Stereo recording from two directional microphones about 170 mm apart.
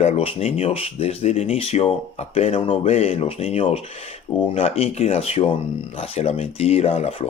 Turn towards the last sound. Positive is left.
turn(degrees=35)  # may be behind; listen again after turning